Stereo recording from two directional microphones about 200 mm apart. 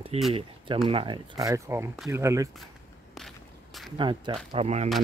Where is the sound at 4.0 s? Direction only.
25° right (ahead or behind).